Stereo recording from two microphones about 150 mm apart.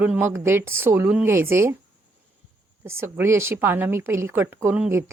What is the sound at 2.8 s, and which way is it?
A woman's voice, 15° right (ahead or behind).